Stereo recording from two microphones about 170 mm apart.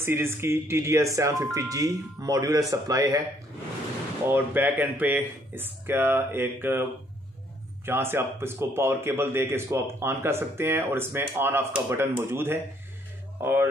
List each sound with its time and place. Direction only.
0.0 s speech: 15° right (ahead or behind)
4.3 s a man's voice: 10° right (ahead or behind)
7.8 s a man's voice: 15° right (ahead or behind)
13.4 s music: 15° right (ahead or behind)